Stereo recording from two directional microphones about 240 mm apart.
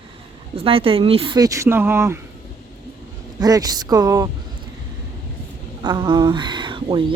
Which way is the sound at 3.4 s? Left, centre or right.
Centre.